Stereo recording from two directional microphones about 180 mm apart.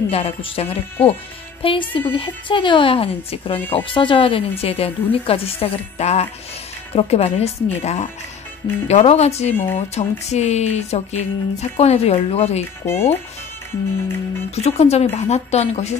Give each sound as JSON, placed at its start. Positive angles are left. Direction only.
{"t": 0.1, "sound": "a woman's voice", "side_deg": 35}
{"t": 9.5, "sound": "speech", "side_deg": 10}
{"t": 9.8, "sound": "speech", "side_deg": 35}
{"t": 12.8, "sound": "speech", "side_deg": 15}
{"t": 14.5, "sound": "speech", "side_deg": 35}